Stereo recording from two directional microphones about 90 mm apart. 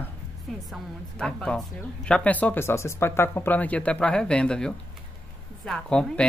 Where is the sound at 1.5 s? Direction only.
10° left (ahead or behind).